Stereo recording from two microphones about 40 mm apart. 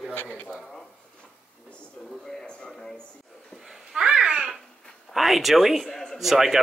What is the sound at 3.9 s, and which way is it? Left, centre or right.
Babbling, right.